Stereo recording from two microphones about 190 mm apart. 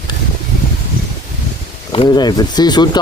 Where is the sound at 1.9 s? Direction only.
25° left (ahead or behind).